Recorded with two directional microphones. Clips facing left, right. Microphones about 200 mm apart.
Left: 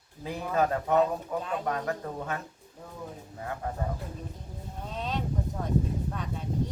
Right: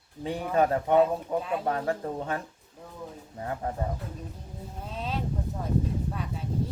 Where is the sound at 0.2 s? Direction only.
30° right (ahead or behind).